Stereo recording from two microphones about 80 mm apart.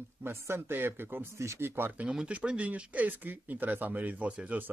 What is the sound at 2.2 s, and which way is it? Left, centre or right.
Speech, centre.